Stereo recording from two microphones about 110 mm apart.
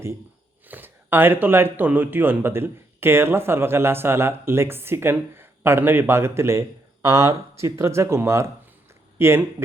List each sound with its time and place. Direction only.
0.7 s speech: 20° right (ahead or behind)